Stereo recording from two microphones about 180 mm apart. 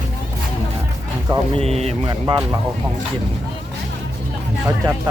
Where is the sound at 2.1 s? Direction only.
20° right (ahead or behind).